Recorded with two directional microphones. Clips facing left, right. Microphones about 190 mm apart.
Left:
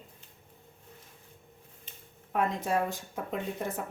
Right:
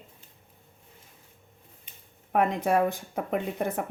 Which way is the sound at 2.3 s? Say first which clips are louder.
Right 5 dB; 60° right (ahead or behind).